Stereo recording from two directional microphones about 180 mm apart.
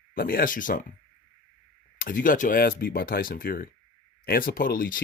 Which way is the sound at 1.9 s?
50° left (ahead or behind).